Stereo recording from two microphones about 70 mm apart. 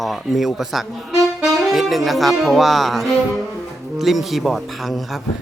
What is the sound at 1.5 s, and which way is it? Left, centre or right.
Music, centre.